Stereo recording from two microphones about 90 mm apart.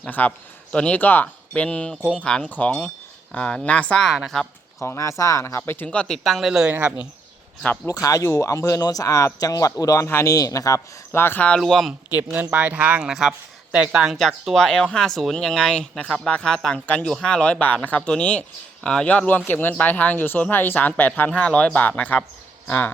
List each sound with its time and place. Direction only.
0.1 s speech: 15° left (ahead or behind)
4.8 s speech: 35° left (ahead or behind)
5.9 s speech: 10° left (ahead or behind)
6.5 s speech: 10° right (ahead or behind)
6.7 s speech: 20° right (ahead or behind)
8.0 s speech: 40° left (ahead or behind)
11.1 s speech: 25° left (ahead or behind)
11.6 s speech: centre (ahead or behind)
12.1 s speech: 20° right (ahead or behind); by 22.2 s 15° left (ahead or behind)